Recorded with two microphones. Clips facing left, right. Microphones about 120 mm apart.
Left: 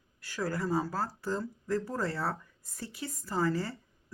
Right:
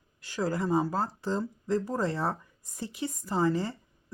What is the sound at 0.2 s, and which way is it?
Speech, 20° right (ahead or behind).